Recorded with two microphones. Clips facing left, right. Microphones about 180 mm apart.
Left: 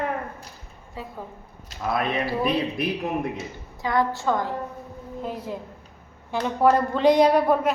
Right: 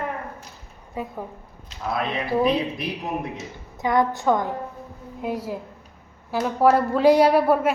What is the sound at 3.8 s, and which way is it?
A woman's voice, 20° right (ahead or behind).